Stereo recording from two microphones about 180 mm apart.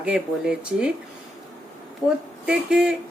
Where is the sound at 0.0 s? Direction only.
5° right (ahead or behind).